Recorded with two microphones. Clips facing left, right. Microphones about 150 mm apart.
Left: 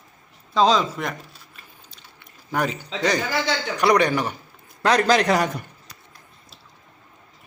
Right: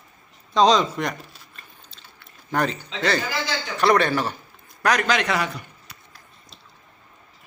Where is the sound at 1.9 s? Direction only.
10° left (ahead or behind).